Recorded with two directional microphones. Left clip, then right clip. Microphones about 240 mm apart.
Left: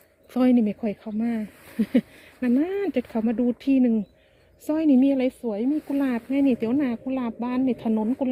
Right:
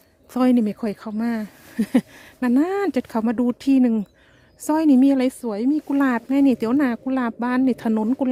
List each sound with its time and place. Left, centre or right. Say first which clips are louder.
0.3 s speech: right 2 dB; right